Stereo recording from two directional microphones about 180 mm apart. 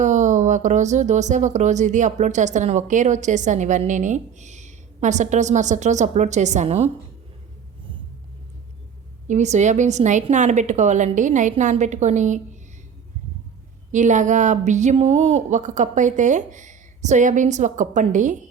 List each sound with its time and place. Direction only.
0.0 s speech: 40° right (ahead or behind)
9.2 s speech: 40° right (ahead or behind)
13.9 s speech: 45° right (ahead or behind)